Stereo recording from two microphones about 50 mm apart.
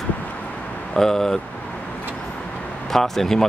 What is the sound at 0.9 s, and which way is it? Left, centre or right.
Speech, centre.